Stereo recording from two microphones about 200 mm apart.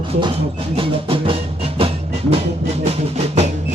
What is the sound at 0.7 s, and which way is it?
Music, 25° right (ahead or behind).